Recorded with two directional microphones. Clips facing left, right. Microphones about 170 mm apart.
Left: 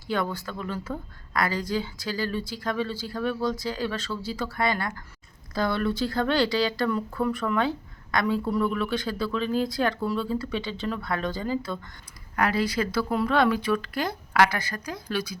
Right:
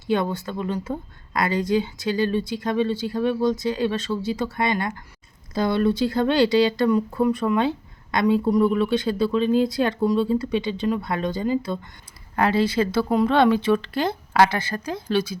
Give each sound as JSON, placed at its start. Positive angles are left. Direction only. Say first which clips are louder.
{"t": 0.1, "sound": "speech", "louder": "right 5 dB", "side_deg": -20}